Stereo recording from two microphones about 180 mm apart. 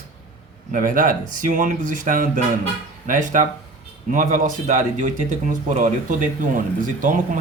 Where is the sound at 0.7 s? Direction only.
50° right (ahead or behind).